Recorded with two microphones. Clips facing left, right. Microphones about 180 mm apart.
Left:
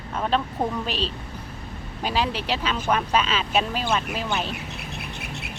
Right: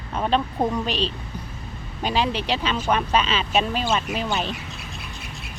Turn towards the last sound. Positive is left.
turn(degrees=65)  # may be behind; listen again after turning